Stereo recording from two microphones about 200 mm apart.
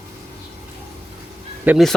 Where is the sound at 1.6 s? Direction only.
5° right (ahead or behind).